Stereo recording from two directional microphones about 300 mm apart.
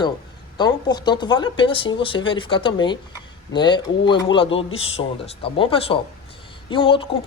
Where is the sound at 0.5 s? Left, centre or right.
Centre.